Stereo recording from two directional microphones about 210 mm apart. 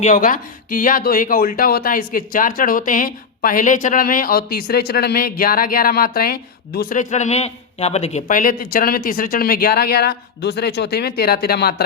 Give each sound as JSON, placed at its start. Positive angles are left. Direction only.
{"t": 0.0, "sound": "speech", "side_deg": 40}